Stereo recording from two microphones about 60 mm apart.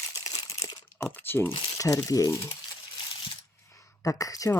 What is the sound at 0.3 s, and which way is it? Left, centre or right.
Crumpling, left.